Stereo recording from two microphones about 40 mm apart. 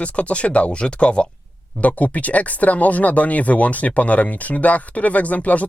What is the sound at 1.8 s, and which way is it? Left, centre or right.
Speech, left.